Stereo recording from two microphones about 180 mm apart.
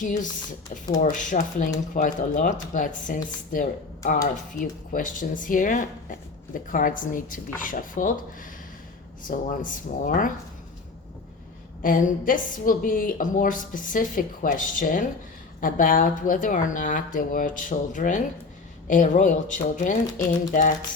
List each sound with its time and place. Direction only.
0.0 s speech: 45° left (ahead or behind)
11.8 s speech: 50° left (ahead or behind)